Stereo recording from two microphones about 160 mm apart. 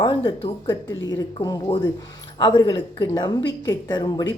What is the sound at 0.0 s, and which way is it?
A woman's voice, 35° left (ahead or behind).